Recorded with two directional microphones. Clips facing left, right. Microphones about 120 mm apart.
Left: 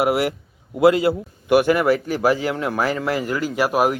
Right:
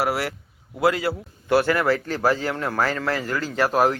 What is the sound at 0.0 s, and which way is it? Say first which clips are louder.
Speech: left 5 dB; 20° left (ahead or behind).